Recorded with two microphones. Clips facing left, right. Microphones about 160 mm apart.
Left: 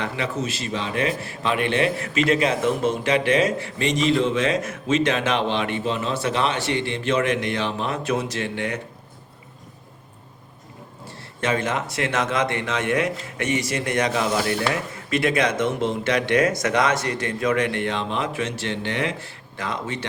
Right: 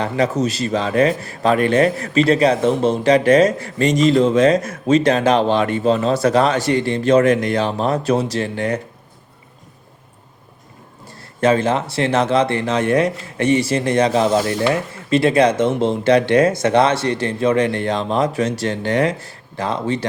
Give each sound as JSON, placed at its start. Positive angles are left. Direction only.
{"t": 0.0, "sound": "speech", "side_deg": -40}
{"t": 11.3, "sound": "speech", "side_deg": -35}